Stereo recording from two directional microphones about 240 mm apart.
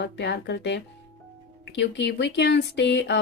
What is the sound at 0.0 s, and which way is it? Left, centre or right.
Speech, left.